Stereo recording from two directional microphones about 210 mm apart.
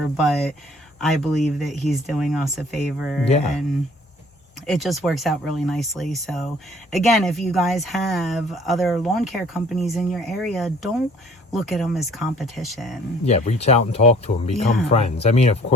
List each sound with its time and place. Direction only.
0.2 s speech: centre (ahead or behind)
3.2 s speech: 30° left (ahead or behind)
4.6 s speech: centre (ahead or behind)
13.2 s speech: 30° left (ahead or behind)